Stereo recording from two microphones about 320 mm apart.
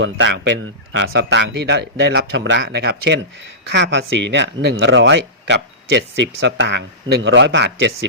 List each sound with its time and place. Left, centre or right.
0.0 s speech: right